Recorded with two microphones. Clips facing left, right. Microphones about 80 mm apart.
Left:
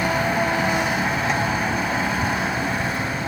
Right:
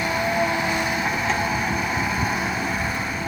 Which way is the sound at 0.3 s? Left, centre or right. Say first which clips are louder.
Left 1 dB; left.